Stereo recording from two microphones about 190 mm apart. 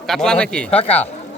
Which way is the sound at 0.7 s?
30° left (ahead or behind).